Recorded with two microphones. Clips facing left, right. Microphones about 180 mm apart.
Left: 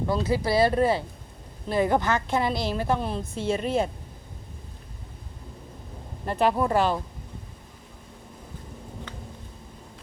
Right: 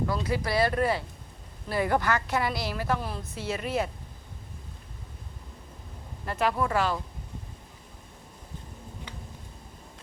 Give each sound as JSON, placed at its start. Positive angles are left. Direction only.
{"t": 0.1, "sound": "a woman's voice", "side_deg": 25}
{"t": 6.2, "sound": "a woman's voice", "side_deg": 25}